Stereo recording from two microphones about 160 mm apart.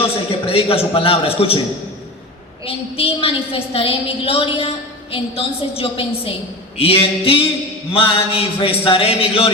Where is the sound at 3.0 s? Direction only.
35° left (ahead or behind).